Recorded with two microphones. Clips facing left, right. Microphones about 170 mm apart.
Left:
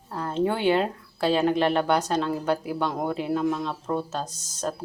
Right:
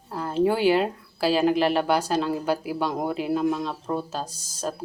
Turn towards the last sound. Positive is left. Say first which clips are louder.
# even
turn(degrees=-10)  # may be behind; listen again after turning